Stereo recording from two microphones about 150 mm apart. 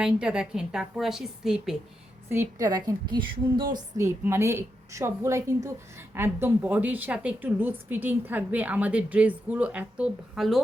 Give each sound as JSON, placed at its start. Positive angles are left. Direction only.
{"t": 0.0, "sound": "a woman's voice", "side_deg": -5}
{"t": 2.3, "sound": "a woman's voice", "side_deg": -20}
{"t": 3.8, "sound": "a woman's voice", "side_deg": -20}